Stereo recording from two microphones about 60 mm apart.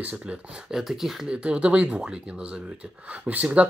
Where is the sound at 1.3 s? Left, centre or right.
Centre.